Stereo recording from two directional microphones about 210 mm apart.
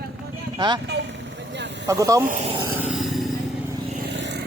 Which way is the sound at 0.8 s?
55° right (ahead or behind).